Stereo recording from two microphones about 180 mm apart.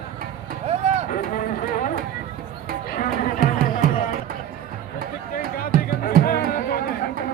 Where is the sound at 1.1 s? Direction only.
50° left (ahead or behind).